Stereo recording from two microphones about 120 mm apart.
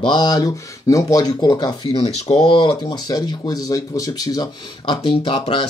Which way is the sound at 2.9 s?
35° left (ahead or behind).